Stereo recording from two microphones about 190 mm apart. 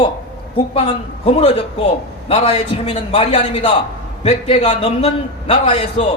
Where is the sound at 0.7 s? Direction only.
30° left (ahead or behind).